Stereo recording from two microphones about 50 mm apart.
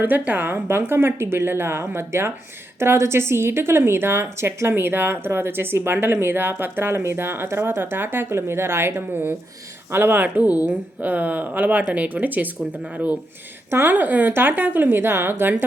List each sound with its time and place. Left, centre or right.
0.0 s a woman's voice: right
10.3 s speech: right
13.7 s a woman's voice: right
13.9 s speech: right